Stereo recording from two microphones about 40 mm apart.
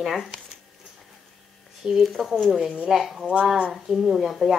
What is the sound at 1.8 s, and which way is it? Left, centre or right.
Speech, centre.